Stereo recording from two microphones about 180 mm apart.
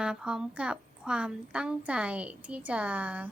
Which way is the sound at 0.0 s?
5° right (ahead or behind).